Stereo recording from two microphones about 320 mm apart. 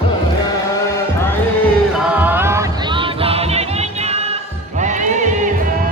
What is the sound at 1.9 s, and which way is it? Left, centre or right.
Music, centre.